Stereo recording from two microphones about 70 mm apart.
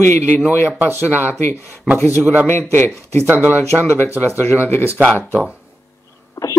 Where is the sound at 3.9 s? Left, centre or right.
Left.